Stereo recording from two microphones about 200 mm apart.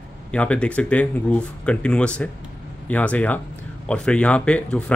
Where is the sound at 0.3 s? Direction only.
5° left (ahead or behind).